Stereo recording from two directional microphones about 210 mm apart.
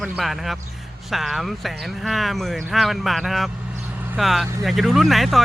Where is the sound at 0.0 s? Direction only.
Centre (ahead or behind).